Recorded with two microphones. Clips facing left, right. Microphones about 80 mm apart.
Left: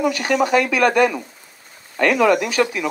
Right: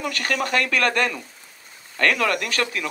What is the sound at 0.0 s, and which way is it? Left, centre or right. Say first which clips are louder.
Speech: left 7 dB; centre.